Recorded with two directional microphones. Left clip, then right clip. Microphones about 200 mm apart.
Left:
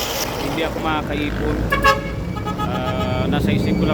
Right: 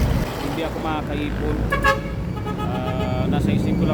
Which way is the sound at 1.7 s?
50° left (ahead or behind).